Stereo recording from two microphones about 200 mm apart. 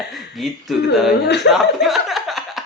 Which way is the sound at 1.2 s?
60° left (ahead or behind).